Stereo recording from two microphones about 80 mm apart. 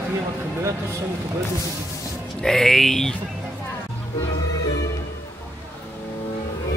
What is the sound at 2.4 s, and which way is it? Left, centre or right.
Speech, centre.